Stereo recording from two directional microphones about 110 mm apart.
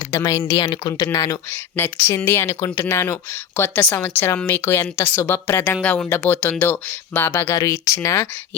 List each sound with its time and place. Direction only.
0.2 s a woman's voice: 25° left (ahead or behind)
0.5 s speech: 40° left (ahead or behind)
1.5 s a woman's voice: 20° left (ahead or behind)
7.5 s a woman's voice: 30° left (ahead or behind)